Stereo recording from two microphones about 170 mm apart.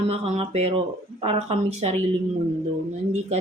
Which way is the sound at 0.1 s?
35° right (ahead or behind).